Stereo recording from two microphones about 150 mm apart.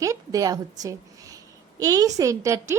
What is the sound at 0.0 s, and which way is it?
A woman's voice, 20° right (ahead or behind).